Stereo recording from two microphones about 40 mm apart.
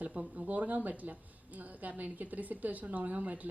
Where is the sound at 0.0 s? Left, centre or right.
Right.